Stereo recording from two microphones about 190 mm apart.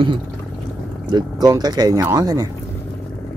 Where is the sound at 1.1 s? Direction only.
20° right (ahead or behind).